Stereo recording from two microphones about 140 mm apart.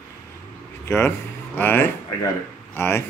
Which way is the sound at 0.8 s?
15° left (ahead or behind).